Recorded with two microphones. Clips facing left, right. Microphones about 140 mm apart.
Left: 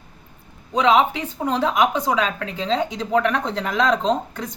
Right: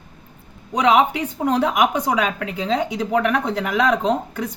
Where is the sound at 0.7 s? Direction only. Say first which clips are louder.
Right 1 dB; 15° right (ahead or behind).